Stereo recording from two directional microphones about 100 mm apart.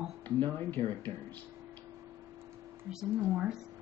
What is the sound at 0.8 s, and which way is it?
Speech, 80° right.